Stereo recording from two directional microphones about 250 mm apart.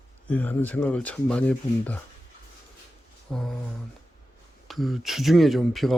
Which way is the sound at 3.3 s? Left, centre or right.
Centre.